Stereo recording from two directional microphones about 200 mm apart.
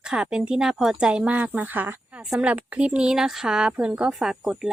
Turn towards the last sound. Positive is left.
turn(degrees=-5)  # may be behind; listen again after turning